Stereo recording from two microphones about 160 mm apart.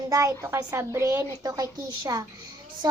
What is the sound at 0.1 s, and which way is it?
A woman's voice, 20° right (ahead or behind).